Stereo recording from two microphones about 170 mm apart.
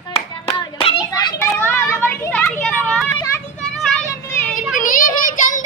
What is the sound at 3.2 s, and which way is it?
Children playing, 15° left (ahead or behind).